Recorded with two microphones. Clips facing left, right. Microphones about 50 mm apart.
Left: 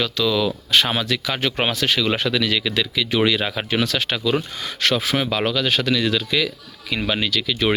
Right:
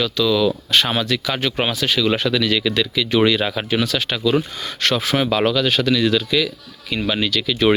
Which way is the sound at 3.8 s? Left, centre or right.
Left.